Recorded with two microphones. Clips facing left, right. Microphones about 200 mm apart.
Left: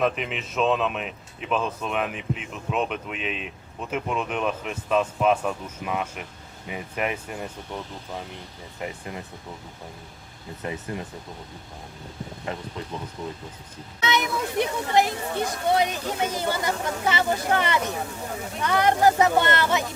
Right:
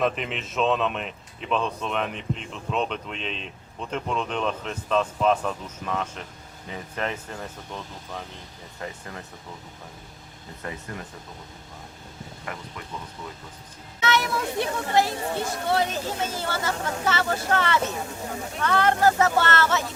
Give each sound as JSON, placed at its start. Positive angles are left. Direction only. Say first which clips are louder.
{"t": 0.0, "sound": "speech", "louder": "left 1 dB", "side_deg": 0}
{"t": 8.8, "sound": "speech", "louder": "left 3 dB", "side_deg": 20}
{"t": 10.6, "sound": "speech", "louder": "left 4 dB", "side_deg": 20}
{"t": 12.5, "sound": "speech", "louder": "left 4 dB", "side_deg": 25}
{"t": 14.0, "sound": "speech", "louder": "right 1 dB", "side_deg": 20}